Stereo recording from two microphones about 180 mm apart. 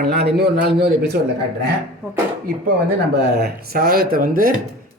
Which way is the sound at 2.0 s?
15° right (ahead or behind).